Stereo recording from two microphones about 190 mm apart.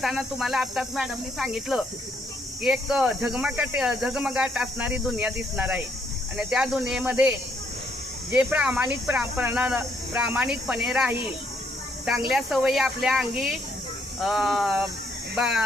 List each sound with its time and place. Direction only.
0.0 s speech: centre (ahead or behind)
12.3 s speech: 5° right (ahead or behind)